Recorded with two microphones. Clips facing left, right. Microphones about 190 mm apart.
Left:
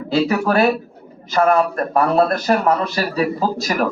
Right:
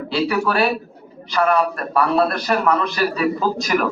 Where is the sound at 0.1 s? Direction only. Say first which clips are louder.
Left 3 dB; 45° left (ahead or behind).